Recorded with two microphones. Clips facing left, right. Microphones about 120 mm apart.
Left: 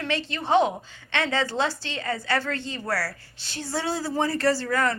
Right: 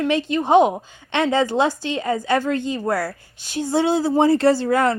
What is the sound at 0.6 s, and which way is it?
Speech, 50° right (ahead or behind).